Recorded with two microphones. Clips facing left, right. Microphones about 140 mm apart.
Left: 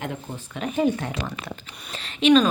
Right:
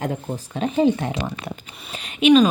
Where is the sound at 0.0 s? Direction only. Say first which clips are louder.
Right 6 dB; 35° right (ahead or behind).